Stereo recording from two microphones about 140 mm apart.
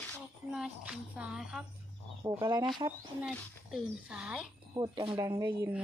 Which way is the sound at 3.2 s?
5° right (ahead or behind).